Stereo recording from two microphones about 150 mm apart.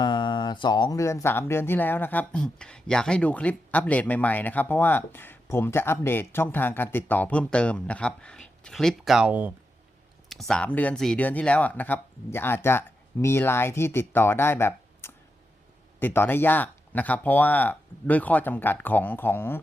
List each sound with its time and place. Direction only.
0.0 s speech: 30° left (ahead or behind)